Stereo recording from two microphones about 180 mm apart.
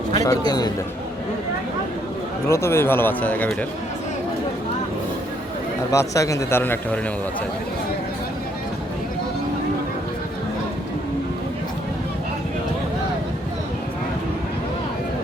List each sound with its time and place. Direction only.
0.1 s a man's voice: 20° left (ahead or behind)
2.5 s speech: 15° left (ahead or behind)
5.9 s speech: 15° left (ahead or behind)